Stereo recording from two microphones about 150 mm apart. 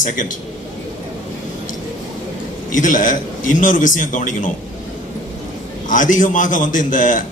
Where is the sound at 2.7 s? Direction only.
60° left (ahead or behind).